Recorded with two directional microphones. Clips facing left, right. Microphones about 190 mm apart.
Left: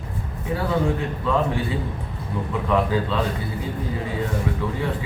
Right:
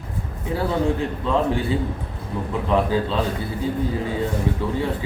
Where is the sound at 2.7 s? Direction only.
30° right (ahead or behind).